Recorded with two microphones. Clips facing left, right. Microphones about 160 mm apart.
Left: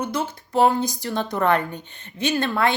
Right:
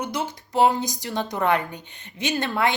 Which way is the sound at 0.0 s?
15° right (ahead or behind).